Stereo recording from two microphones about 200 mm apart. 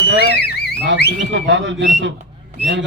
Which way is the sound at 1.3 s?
65° right (ahead or behind).